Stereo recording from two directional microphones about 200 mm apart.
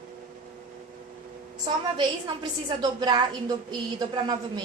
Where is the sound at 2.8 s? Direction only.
20° right (ahead or behind).